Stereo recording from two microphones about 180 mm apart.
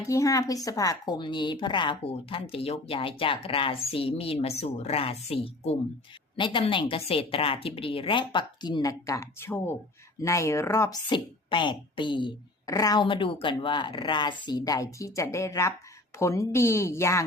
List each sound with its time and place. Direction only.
0.0 s a woman's voice: 15° left (ahead or behind)